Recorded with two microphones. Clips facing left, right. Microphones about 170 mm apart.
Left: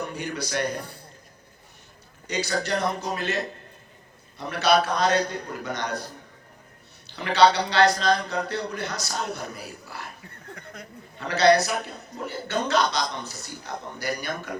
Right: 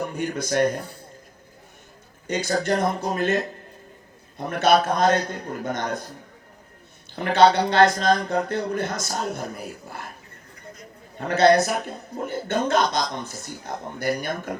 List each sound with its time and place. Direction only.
0.1 s speech: 50° right (ahead or behind)
2.2 s speech: 50° right (ahead or behind)
7.2 s speech: 50° right (ahead or behind)
11.2 s speech: 50° right (ahead or behind)